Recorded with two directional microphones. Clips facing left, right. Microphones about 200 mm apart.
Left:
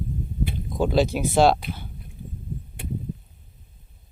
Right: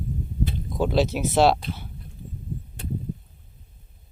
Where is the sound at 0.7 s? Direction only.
Centre (ahead or behind).